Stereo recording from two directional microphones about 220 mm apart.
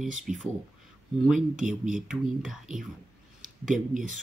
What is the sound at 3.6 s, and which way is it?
Speech, 35° right (ahead or behind).